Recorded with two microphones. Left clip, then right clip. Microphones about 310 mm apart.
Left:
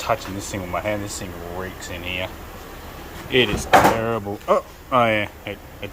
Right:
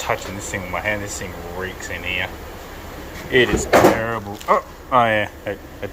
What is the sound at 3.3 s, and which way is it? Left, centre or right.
Speech, centre.